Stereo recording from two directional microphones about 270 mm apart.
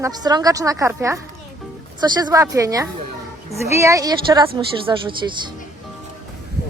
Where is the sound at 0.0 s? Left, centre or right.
Centre.